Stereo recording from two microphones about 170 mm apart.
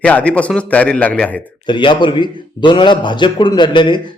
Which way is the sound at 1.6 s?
30° left (ahead or behind).